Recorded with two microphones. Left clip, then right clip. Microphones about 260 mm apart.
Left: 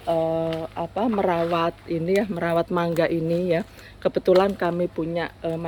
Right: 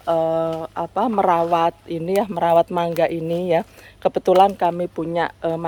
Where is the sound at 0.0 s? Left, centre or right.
Centre.